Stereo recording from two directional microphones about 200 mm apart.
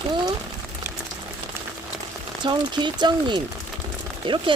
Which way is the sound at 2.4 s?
20° right (ahead or behind).